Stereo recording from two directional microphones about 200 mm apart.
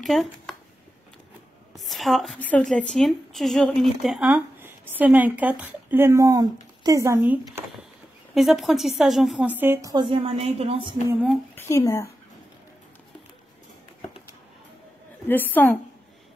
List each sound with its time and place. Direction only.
0.0 s speech: centre (ahead or behind)
1.8 s a woman's voice: centre (ahead or behind); by 11.0 s 25° right (ahead or behind)
11.1 s a woman's voice: 5° right (ahead or behind)
11.5 s speech: 10° left (ahead or behind)
15.2 s a woman's voice: 10° left (ahead or behind)